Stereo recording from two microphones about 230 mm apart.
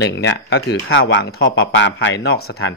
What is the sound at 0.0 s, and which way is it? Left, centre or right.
Speech, left.